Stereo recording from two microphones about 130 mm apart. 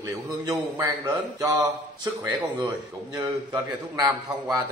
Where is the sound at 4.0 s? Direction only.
30° right (ahead or behind).